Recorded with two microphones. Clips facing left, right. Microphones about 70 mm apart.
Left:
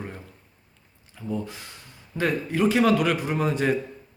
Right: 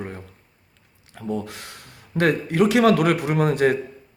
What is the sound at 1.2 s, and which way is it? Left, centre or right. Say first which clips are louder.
Speech: right 3 dB; right.